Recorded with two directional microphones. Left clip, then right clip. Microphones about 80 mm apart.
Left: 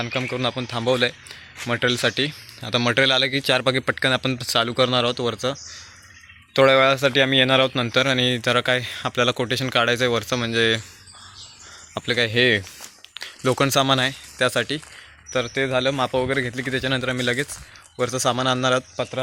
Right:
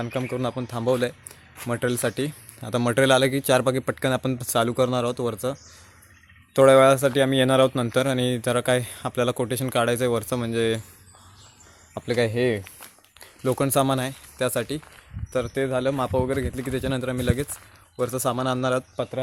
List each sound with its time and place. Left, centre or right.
0.3 s speech: right
2.1 s speech: right
2.6 s speech: right
4.6 s speech: right
6.5 s speech: right
7.9 s speech: right
10.4 s speech: right
11.9 s speech: centre
12.4 s speech: centre
13.1 s a sound: centre
13.6 s speech: centre